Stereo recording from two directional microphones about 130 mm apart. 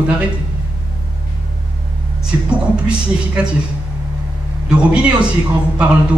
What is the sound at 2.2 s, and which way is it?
Speech, 10° right (ahead or behind).